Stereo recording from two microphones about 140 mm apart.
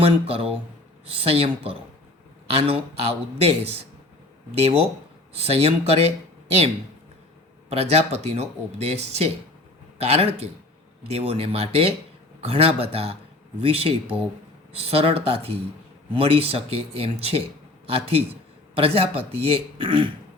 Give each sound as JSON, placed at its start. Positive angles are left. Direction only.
{"t": 0.0, "sound": "speech", "side_deg": -45}
{"t": 7.7, "sound": "speech", "side_deg": -50}